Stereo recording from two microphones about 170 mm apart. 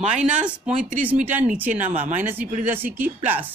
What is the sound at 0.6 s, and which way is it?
Speech, 50° right (ahead or behind).